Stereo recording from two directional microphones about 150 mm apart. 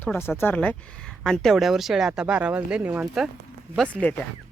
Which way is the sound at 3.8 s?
10° left (ahead or behind).